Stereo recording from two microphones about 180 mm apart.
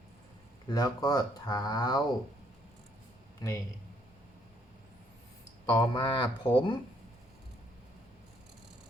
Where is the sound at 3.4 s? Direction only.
25° left (ahead or behind).